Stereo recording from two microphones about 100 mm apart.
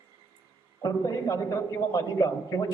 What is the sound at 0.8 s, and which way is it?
A man's voice, 35° left (ahead or behind).